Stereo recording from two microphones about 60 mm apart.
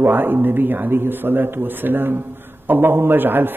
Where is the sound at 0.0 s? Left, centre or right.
Right.